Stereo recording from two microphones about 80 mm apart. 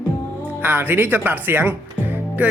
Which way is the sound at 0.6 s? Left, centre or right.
Right.